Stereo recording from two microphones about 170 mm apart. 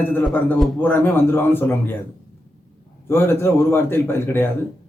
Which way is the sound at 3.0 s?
15° left (ahead or behind).